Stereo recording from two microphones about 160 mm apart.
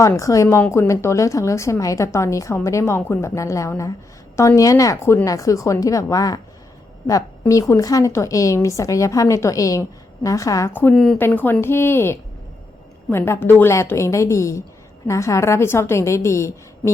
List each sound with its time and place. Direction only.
0.2 s a woman's voice: 20° left (ahead or behind)
10.9 s a woman's voice: centre (ahead or behind); by 16.9 s 20° left (ahead or behind)